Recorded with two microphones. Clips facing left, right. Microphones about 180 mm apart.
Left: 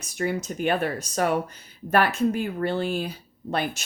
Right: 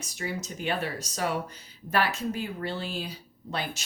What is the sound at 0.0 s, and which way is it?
Speech, 55° left (ahead or behind).